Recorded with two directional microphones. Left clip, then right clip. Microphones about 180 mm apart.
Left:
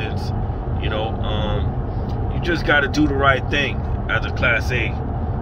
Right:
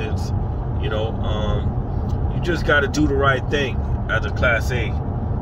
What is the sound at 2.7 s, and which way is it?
Speech, 25° right (ahead or behind).